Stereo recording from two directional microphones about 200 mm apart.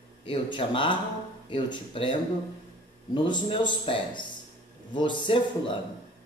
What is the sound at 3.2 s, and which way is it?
Speech, 25° left (ahead or behind).